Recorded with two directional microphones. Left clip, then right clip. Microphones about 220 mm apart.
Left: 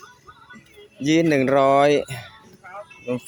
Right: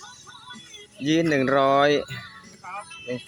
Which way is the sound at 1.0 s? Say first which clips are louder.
Left 3 dB; 15° left (ahead or behind).